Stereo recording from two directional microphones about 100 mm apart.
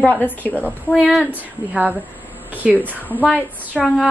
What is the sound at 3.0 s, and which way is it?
Speech, 15° left (ahead or behind).